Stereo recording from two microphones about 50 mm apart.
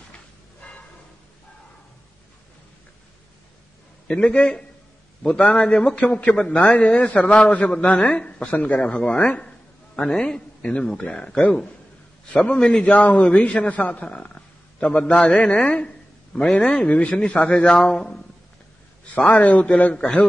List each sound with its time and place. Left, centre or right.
4.1 s a man's voice: left
14.0 s a man's voice: left
19.1 s a man's voice: left